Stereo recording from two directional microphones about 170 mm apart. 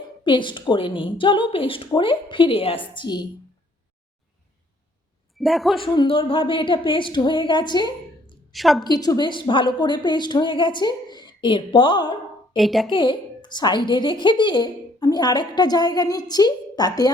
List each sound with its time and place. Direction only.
0.3 s a woman's voice: 30° left (ahead or behind)
5.4 s a woman's voice: centre (ahead or behind)
5.7 s a woman's voice: 30° left (ahead or behind)
8.5 s a woman's voice: centre (ahead or behind)
8.8 s a woman's voice: 25° left (ahead or behind)
12.5 s a woman's voice: centre (ahead or behind)
12.9 s a woman's voice: 30° left (ahead or behind)